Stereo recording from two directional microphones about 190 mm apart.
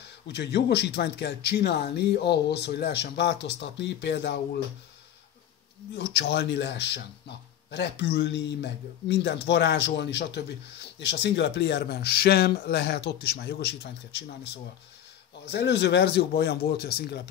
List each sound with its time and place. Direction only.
0.3 s a man's voice: 60° left (ahead or behind)
5.9 s a man's voice: 60° left (ahead or behind)
15.5 s a man's voice: 60° left (ahead or behind)